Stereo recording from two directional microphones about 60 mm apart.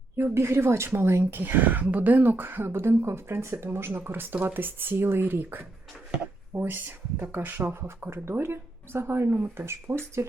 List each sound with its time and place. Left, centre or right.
0.3 s speech: right
1.3 s speech: right
10.2 s speech: right